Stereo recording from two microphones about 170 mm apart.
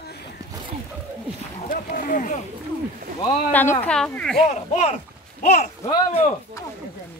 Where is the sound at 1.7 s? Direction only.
55° left (ahead or behind).